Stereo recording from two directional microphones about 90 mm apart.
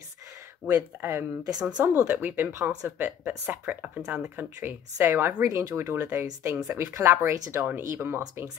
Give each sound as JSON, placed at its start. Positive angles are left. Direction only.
{"t": 0.7, "sound": "speech", "side_deg": -30}
{"t": 1.5, "sound": "speech", "side_deg": -45}
{"t": 1.8, "sound": "speech", "side_deg": -20}